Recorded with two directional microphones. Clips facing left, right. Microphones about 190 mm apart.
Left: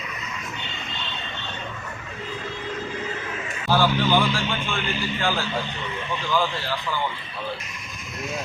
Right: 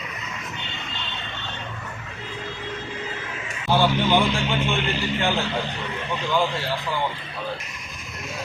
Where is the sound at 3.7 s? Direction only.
20° right (ahead or behind).